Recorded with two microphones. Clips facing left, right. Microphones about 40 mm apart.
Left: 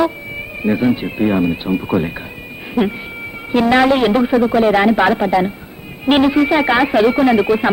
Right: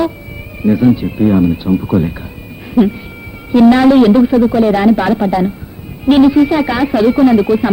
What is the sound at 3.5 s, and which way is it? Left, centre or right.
Speech, left.